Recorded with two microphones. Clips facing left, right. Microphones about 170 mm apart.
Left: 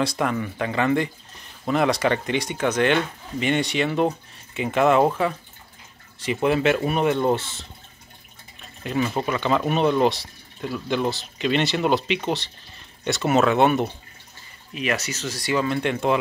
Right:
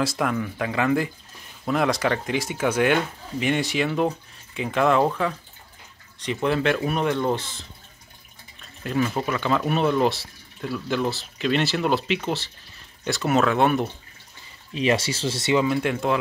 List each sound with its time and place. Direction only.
0.0 s speech: centre (ahead or behind)
8.8 s speech: 5° left (ahead or behind)
14.7 s speech: 30° right (ahead or behind)
15.6 s speech: 5° right (ahead or behind)